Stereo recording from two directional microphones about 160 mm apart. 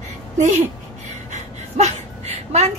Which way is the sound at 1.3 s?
45° right (ahead or behind).